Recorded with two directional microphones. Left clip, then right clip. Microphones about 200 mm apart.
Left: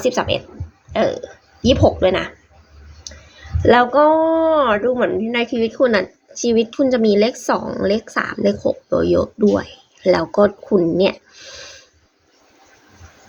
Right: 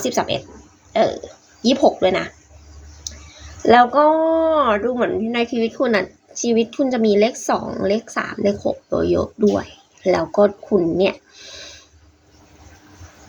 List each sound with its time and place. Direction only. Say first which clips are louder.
0.0 s speech: left 3 dB; 10° left (ahead or behind)
3.7 s speech: even; 20° left (ahead or behind)
11.4 s a sound: left 1 dB; 20° left (ahead or behind)